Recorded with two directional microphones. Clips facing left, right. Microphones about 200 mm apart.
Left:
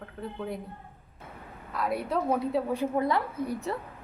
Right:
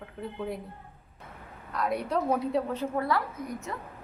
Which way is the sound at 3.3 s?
30° left (ahead or behind).